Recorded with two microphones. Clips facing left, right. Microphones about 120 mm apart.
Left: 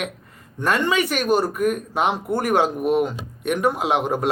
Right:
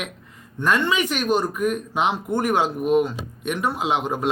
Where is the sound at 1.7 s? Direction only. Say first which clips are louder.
Left 1 dB; 45° left (ahead or behind).